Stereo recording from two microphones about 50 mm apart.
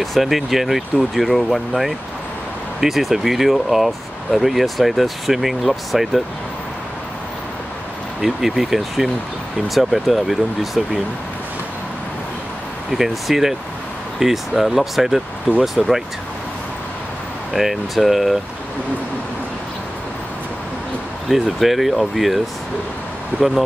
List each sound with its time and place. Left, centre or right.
0.0 s speech: centre
8.2 s speech: centre
12.9 s speech: centre
17.5 s speech: centre
21.3 s speech: centre
23.3 s speech: right